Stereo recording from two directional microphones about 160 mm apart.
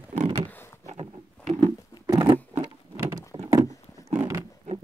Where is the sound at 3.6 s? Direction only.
20° left (ahead or behind).